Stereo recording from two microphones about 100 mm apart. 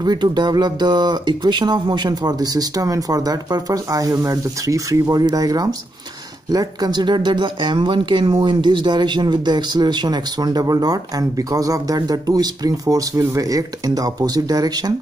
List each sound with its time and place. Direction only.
0.0 s speech: 45° right (ahead or behind)